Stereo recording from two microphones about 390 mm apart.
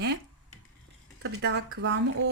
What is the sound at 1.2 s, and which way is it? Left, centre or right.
Speech, right.